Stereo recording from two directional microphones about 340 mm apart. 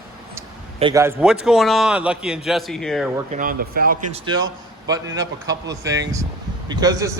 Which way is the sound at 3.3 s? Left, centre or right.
Right.